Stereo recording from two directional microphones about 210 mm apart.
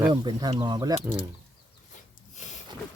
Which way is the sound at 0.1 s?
20° right (ahead or behind).